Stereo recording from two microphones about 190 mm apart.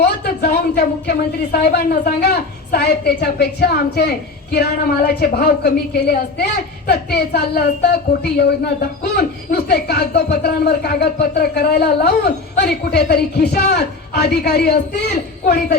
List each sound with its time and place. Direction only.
0.0 s speech: 55° left (ahead or behind)